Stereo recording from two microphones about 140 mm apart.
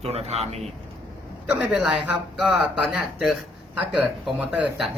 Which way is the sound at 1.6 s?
5° right (ahead or behind).